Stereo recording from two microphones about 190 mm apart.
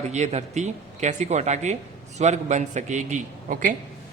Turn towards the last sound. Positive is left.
turn(degrees=-45)  # may be behind; listen again after turning